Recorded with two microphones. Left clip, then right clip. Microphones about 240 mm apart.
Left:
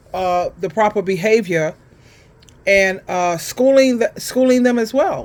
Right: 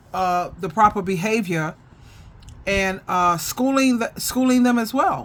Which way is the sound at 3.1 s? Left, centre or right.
Right.